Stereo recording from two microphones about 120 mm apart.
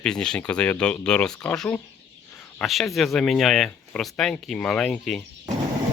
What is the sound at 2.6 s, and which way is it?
Speech, centre (ahead or behind).